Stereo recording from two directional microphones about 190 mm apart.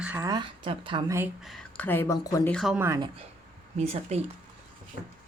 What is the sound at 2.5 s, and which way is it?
Speech, centre (ahead or behind).